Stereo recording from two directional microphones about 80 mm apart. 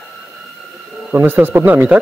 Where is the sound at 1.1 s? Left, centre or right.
Right.